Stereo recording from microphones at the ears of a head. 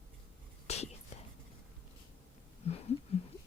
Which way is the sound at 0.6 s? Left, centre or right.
Left.